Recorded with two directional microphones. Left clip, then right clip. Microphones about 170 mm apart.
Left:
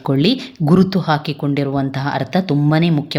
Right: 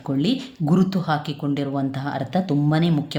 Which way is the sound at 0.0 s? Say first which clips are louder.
Left 7 dB; 30° left (ahead or behind).